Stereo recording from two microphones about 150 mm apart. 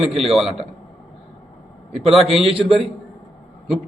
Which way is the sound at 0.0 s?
Centre (ahead or behind).